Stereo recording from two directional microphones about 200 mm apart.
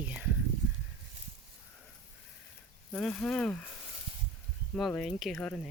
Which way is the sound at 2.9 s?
5° left (ahead or behind).